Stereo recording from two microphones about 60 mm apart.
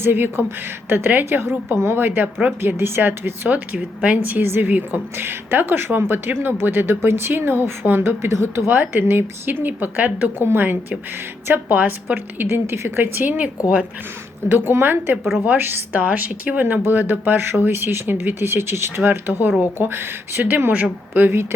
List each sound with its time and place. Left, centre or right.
0.0 s a woman's voice: right
8.7 s a woman's voice: right
14.5 s a woman's voice: right
15.9 s a woman's voice: right